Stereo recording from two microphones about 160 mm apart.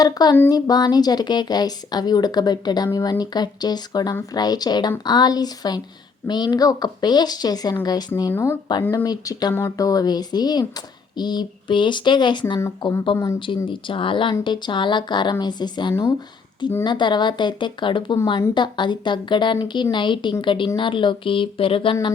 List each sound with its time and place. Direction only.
0.0 s speech: 25° left (ahead or behind)
9.0 s speech: 25° left (ahead or behind)